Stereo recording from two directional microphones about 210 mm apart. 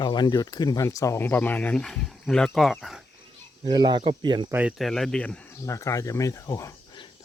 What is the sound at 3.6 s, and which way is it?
Speech, 20° right (ahead or behind).